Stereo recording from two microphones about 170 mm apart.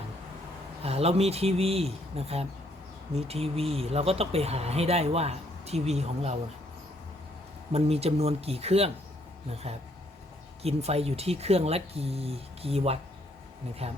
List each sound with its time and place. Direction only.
0.8 s speech: 35° right (ahead or behind)
7.7 s speech: 35° right (ahead or behind)